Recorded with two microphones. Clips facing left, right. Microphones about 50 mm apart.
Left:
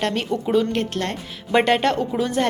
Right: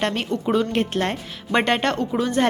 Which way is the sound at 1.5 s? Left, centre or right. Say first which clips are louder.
Left 2 dB; centre.